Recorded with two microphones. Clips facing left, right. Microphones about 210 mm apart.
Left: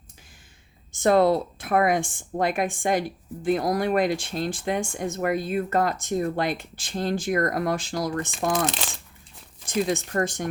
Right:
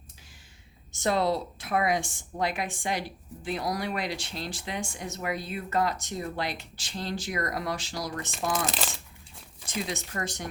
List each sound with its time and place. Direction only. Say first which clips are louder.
0.9 s speech: left 7 dB; 50° left (ahead or behind)
8.6 s speech: left 4 dB; centre (ahead or behind)
9.6 s speech: left 9 dB; 50° left (ahead or behind)